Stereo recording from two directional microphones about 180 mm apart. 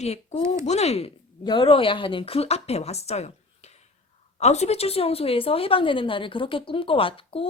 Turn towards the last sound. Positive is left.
turn(degrees=30)  # may be behind; listen again after turning